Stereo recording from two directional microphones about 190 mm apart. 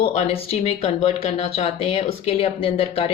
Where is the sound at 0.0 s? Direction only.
35° left (ahead or behind).